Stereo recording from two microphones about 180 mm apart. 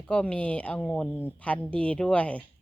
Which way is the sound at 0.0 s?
5° left (ahead or behind).